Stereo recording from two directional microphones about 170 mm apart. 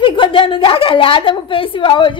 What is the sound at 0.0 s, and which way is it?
A woman's voice, 30° left (ahead or behind).